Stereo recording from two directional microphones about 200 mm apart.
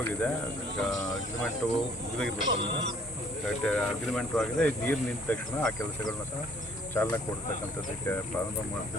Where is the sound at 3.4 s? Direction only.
5° left (ahead or behind).